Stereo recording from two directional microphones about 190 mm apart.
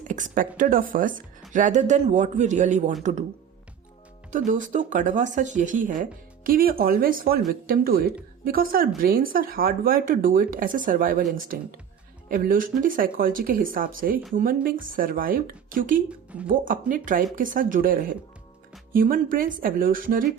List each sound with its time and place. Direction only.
0.0 s speech: 40° right (ahead or behind)
4.3 s speech: 45° right (ahead or behind)
16.0 s speech: 5° right (ahead or behind)
16.5 s speech: 45° right (ahead or behind)